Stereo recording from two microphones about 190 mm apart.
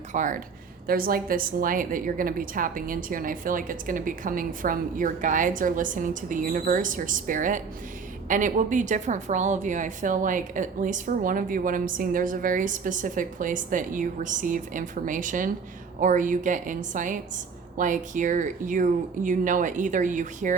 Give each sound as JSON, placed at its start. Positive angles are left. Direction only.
{"t": 0.1, "sound": "a woman's voice", "side_deg": -45}